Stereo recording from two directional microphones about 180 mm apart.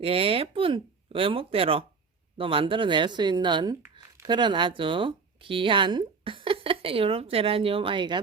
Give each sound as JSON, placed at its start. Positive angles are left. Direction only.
{"t": 0.0, "sound": "speech", "side_deg": -30}